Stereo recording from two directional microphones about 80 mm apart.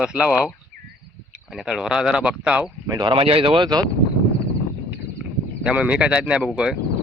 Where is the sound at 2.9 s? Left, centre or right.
Right.